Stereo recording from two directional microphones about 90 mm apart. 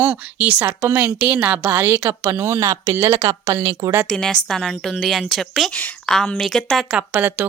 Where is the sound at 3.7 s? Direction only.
45° right (ahead or behind).